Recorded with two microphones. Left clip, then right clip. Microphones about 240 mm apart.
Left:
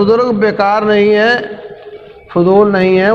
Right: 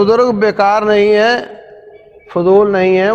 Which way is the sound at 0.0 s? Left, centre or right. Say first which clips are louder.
Even; right.